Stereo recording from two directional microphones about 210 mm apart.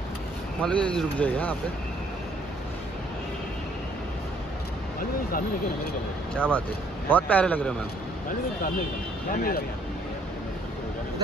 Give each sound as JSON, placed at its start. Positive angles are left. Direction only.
{"t": 0.6, "sound": "speech", "side_deg": 5}
{"t": 6.3, "sound": "a man's voice", "side_deg": 5}
{"t": 9.3, "sound": "speech", "side_deg": 45}